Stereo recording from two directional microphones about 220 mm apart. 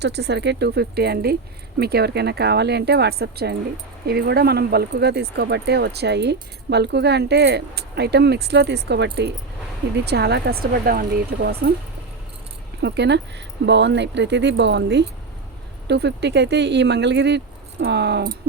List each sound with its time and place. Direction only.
0.0 s speech: 50° right (ahead or behind)
12.8 s speech: 50° right (ahead or behind)